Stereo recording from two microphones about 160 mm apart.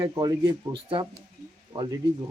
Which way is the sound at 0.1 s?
25° right (ahead or behind).